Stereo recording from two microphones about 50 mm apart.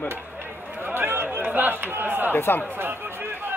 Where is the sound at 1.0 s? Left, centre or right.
Right.